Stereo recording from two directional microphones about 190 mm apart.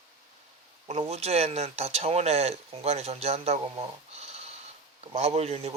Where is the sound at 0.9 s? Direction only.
35° right (ahead or behind).